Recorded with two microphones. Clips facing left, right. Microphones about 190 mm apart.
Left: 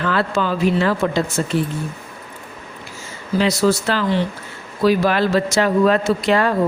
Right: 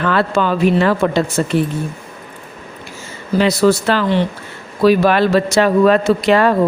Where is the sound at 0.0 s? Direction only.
65° right (ahead or behind).